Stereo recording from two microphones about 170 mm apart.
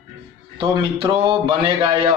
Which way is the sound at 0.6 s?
30° right (ahead or behind).